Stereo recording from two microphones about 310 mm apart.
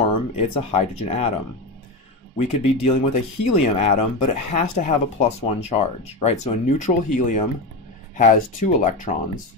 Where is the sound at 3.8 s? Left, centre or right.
Left.